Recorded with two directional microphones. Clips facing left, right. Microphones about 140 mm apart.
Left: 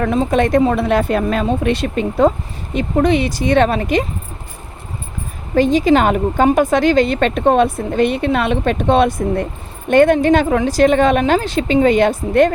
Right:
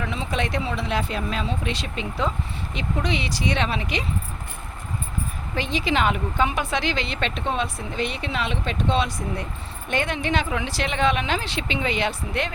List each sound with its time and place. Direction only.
0.0 s speech: 50° left (ahead or behind)
5.5 s speech: 45° left (ahead or behind)